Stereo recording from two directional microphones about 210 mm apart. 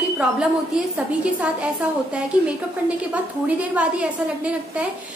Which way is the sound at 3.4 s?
5° right (ahead or behind).